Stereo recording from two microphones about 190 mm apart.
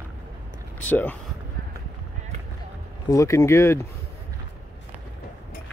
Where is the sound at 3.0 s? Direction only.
15° left (ahead or behind).